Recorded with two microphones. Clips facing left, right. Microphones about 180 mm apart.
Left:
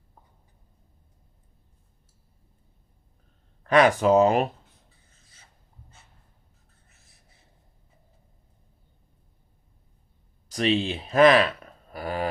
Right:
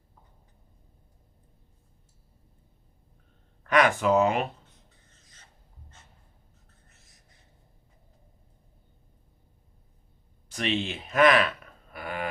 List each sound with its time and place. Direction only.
3.7 s speech: 35° left (ahead or behind)
5.0 s a sound: 10° left (ahead or behind)
10.5 s speech: 35° left (ahead or behind)